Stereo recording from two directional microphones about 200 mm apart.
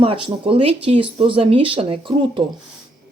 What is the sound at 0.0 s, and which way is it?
Speech, 30° right (ahead or behind).